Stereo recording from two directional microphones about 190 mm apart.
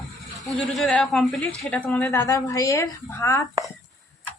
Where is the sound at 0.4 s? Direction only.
Centre (ahead or behind).